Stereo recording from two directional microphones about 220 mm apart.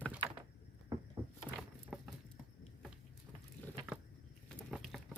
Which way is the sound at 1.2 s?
25° right (ahead or behind).